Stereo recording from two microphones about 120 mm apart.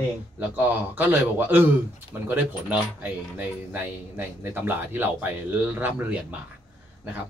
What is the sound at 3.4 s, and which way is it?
A man's voice, 15° right (ahead or behind).